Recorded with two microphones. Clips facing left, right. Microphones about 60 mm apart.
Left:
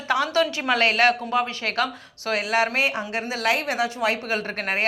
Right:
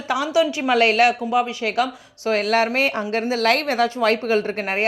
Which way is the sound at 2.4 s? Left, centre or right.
Right.